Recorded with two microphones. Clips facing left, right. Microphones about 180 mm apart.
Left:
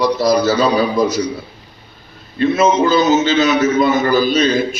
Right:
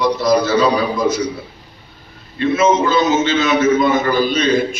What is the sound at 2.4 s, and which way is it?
A man's voice, 35° left (ahead or behind).